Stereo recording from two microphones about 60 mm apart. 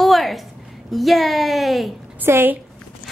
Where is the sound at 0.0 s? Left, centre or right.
Centre.